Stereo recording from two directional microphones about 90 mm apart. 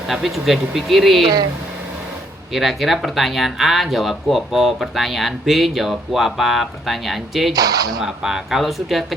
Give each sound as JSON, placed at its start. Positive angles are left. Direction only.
{"t": 0.1, "sound": "speech", "side_deg": 0}
{"t": 2.5, "sound": "speech", "side_deg": 0}
{"t": 7.5, "sound": "speech", "side_deg": -40}
{"t": 8.0, "sound": "speech", "side_deg": -5}